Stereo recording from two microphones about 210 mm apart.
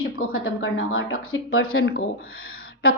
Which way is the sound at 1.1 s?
90° left.